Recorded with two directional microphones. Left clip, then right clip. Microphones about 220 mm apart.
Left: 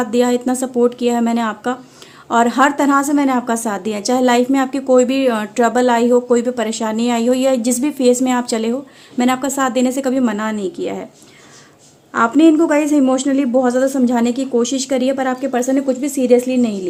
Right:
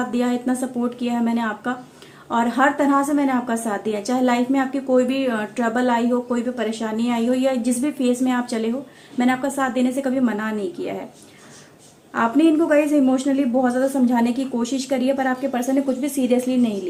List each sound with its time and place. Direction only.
0.1 s a woman's voice: 45° left (ahead or behind)
12.1 s a woman's voice: 40° left (ahead or behind)